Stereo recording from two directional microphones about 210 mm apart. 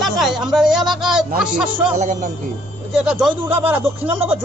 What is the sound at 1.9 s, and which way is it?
Speech, 35° right (ahead or behind).